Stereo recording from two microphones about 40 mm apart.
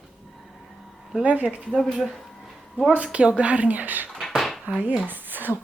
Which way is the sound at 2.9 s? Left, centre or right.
Right.